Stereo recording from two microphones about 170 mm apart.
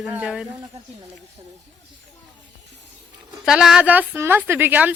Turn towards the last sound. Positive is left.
turn(degrees=-10)  # may be behind; listen again after turning